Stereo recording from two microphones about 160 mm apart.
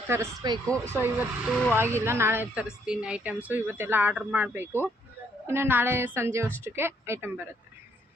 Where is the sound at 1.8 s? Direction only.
15° right (ahead or behind).